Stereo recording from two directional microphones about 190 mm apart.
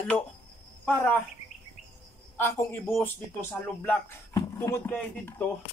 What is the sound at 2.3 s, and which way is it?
A man's voice, 10° left (ahead or behind).